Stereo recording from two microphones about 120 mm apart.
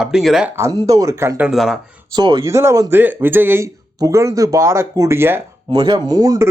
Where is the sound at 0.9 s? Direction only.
25° right (ahead or behind).